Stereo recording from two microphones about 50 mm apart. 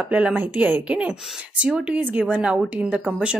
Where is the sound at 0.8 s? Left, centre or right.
Right.